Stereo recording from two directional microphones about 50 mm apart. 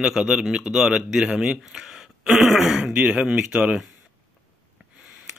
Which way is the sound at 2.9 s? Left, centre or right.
Centre.